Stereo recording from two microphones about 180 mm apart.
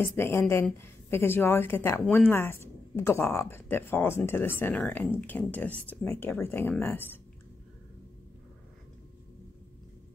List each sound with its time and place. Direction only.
0.0 s a woman's voice: 10° left (ahead or behind)